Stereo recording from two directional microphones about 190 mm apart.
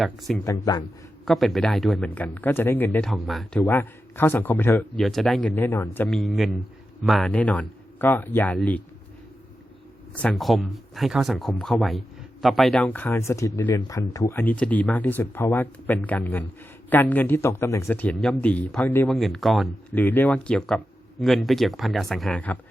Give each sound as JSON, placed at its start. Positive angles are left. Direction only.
{"t": 0.0, "sound": "speech", "side_deg": 0}
{"t": 0.4, "sound": "speech", "side_deg": 15}
{"t": 1.2, "sound": "speech", "side_deg": 0}
{"t": 3.6, "sound": "speech", "side_deg": 10}
{"t": 4.9, "sound": "speech", "side_deg": 0}
{"t": 6.1, "sound": "speech", "side_deg": 0}
{"t": 10.2, "sound": "speech", "side_deg": 0}